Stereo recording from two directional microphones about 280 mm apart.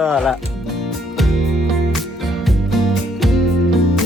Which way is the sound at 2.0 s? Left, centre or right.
Centre.